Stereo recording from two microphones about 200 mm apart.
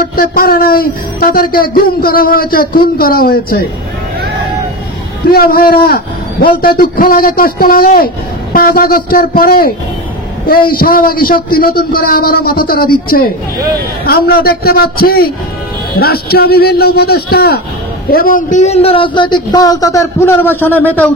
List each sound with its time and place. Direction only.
0.1 s speech: 45° left (ahead or behind)
5.3 s a man's voice: 50° left (ahead or behind); by 21.1 s 10° left (ahead or behind)